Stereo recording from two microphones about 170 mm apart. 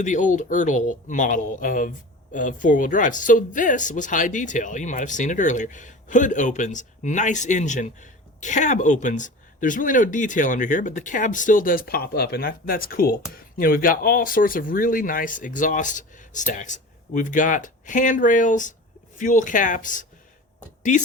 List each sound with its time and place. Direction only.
0.0 s speech: 45° left (ahead or behind)